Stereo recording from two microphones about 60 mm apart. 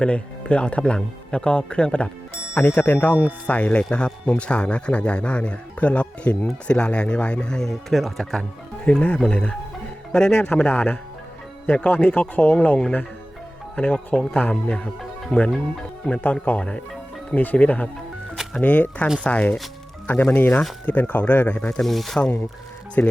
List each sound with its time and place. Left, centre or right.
0.0 s speech: centre
2.6 s speech: left; by 8.4 s centre
8.8 s a man's voice: centre
10.4 s speech: left
21.8 s speech: centre
23.0 s speech: left